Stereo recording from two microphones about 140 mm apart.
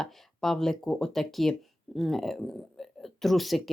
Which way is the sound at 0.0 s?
5° left (ahead or behind).